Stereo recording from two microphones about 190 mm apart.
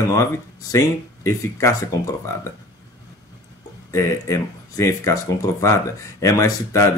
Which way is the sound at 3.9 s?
15° left (ahead or behind).